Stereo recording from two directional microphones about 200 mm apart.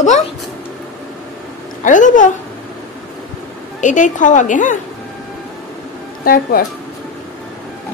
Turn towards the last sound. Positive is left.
turn(degrees=45)  # may be behind; listen again after turning